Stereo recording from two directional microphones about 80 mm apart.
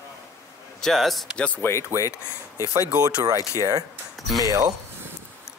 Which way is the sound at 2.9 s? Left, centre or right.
Right.